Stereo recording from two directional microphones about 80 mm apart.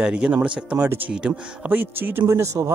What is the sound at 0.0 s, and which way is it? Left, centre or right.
Speech, centre.